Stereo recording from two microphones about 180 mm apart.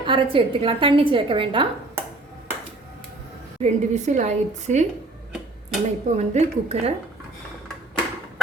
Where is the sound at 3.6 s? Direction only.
40° right (ahead or behind).